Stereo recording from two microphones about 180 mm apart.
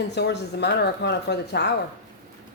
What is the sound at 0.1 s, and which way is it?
Speech, 70° left (ahead or behind).